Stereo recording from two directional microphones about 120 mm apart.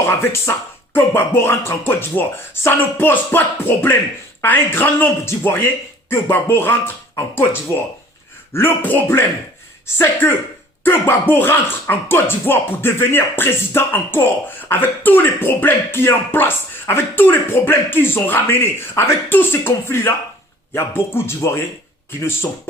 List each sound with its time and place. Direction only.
0.0 s a man's voice: 20° left (ahead or behind)
8.5 s speech: 15° left (ahead or behind)